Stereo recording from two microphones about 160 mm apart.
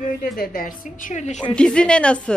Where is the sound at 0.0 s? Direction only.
65° left (ahead or behind); by 1.4 s 50° left (ahead or behind).